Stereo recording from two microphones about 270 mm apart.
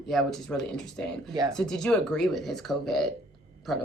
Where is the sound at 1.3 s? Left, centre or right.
Centre.